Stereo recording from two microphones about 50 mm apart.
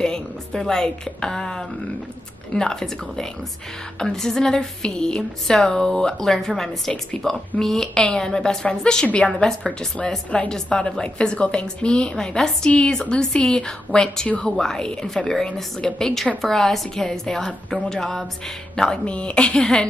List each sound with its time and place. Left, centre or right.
0.0 s a woman's voice: centre
6.9 s a woman's voice: left
7.5 s a woman's voice: centre
9.3 s speech: centre
18.8 s a woman's voice: centre